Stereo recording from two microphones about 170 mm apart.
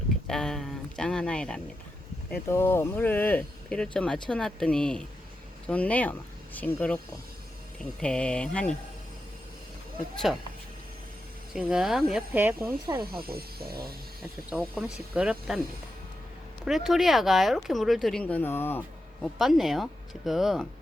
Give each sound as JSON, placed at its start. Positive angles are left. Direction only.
{"t": 0.3, "sound": "speech", "side_deg": 5}
{"t": 8.0, "sound": "speech", "side_deg": 5}
{"t": 10.3, "sound": "speech", "side_deg": -5}
{"t": 11.5, "sound": "speech", "side_deg": -5}
{"t": 13.2, "sound": "speech", "side_deg": -65}
{"t": 14.5, "sound": "speech", "side_deg": -5}
{"t": 16.6, "sound": "speech", "side_deg": 0}
{"t": 19.2, "sound": "speech", "side_deg": 0}